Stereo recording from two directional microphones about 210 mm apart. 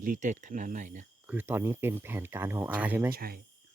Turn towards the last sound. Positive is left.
turn(degrees=-45)  # may be behind; listen again after turning